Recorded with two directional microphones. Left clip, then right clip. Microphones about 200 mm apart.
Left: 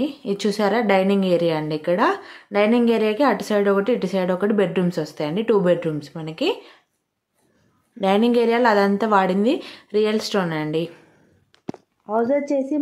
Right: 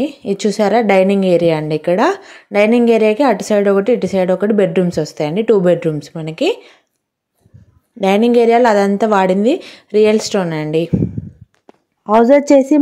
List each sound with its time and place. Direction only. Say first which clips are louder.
0.0 s a woman's voice: right 6 dB; 30° right (ahead or behind)
8.0 s a woman's voice: right 7 dB; 30° right (ahead or behind)
12.1 s a woman's voice: right 11 dB; 55° right (ahead or behind)